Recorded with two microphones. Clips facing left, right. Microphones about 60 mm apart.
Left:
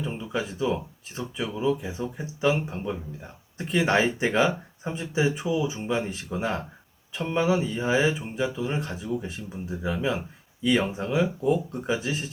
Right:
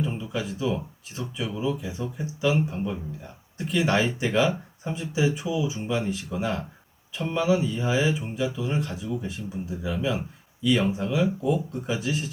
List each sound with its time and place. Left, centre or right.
1.1 s speech: left